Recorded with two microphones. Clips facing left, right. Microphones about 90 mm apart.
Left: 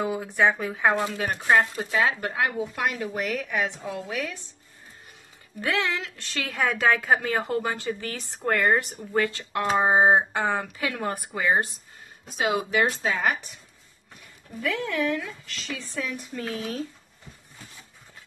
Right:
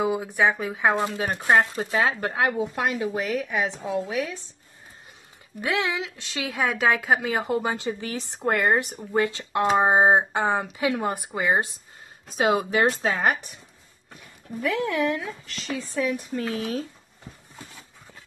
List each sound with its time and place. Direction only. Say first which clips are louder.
0.0 s speech: right 1 dB; 10° right (ahead or behind)
0.9 s speech: right 1 dB; 25° right (ahead or behind)
1.9 s speech: right 1 dB; 35° right (ahead or behind)
3.2 s a woman's voice: right 2 dB; 5° right (ahead or behind)
3.4 s speech: right 1 dB; 20° right (ahead or behind)
5.6 s a woman's voice: right 1 dB; 15° right (ahead or behind)
12.4 s speech: right 2 dB; 35° right (ahead or behind)
14.7 s speech: right 2 dB; 35° right (ahead or behind)